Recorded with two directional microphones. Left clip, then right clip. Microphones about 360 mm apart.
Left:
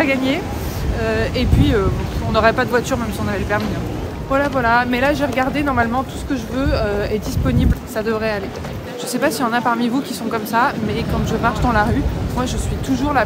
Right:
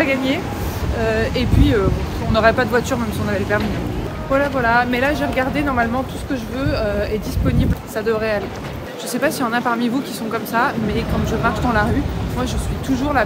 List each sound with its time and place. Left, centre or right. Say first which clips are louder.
0.0 s speech: left 1 dB; centre